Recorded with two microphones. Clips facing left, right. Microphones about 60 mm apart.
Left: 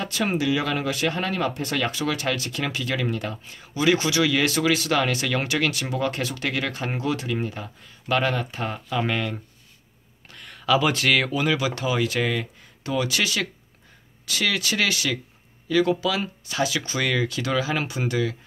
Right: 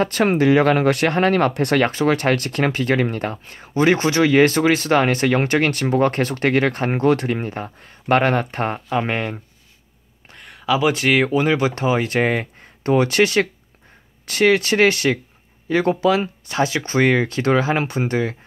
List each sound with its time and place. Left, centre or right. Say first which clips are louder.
0.0 s speech: right 8 dB; right
10.3 s speech: right 1 dB; centre; by 18.3 s right